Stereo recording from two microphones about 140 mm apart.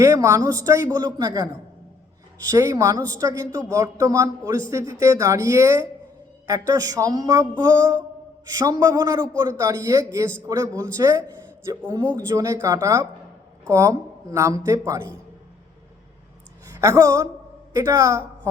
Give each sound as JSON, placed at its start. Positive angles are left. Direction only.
{"t": 0.0, "sound": "speech", "side_deg": -20}
{"t": 2.5, "sound": "speech", "side_deg": -20}
{"t": 16.8, "sound": "speech", "side_deg": -25}